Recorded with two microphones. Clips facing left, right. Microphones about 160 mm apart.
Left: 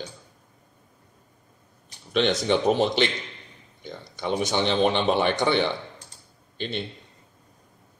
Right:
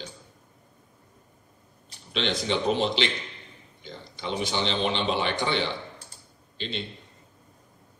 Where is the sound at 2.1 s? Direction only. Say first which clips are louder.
Left 5 dB; 50° left (ahead or behind).